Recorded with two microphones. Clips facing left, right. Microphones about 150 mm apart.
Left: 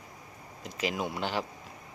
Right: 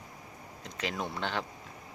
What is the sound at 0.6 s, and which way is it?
Speech, 10° left (ahead or behind).